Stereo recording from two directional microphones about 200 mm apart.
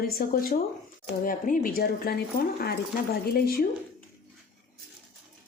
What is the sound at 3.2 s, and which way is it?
Speech, 50° left (ahead or behind).